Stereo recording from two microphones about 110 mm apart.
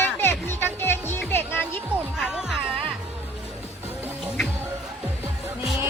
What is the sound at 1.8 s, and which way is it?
Speech, 10° right (ahead or behind).